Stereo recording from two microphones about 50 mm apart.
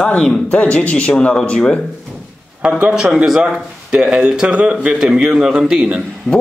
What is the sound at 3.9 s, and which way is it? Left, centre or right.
A man's voice, centre.